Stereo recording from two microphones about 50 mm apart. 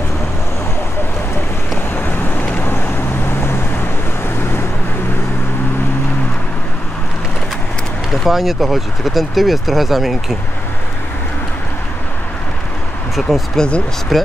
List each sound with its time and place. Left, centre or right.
2.0 s vehicle: left
3.3 s vehicle: left
8.1 s speech: centre
13.6 s speech: left
14.1 s speech: centre